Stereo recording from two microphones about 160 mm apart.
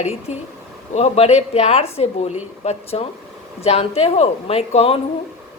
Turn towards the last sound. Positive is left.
turn(degrees=40)  # may be behind; listen again after turning